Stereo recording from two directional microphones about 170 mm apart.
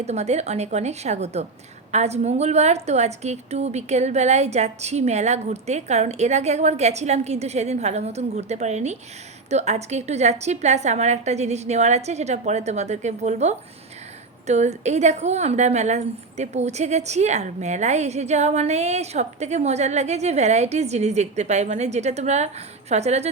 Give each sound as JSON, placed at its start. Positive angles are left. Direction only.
{"t": 0.0, "sound": "a woman's voice", "side_deg": -40}